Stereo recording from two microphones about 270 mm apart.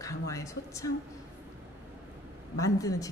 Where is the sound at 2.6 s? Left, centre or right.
Centre.